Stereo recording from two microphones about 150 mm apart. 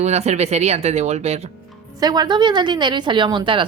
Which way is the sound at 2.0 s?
25° right (ahead or behind).